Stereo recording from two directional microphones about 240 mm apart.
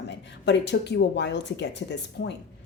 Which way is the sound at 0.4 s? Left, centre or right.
Left.